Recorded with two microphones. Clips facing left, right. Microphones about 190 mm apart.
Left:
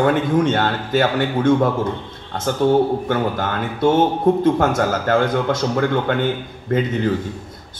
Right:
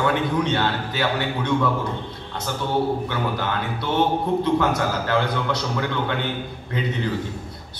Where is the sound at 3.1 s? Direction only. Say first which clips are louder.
Left 5 dB; 50° left (ahead or behind).